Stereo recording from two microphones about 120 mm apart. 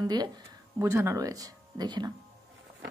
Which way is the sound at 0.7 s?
25° right (ahead or behind).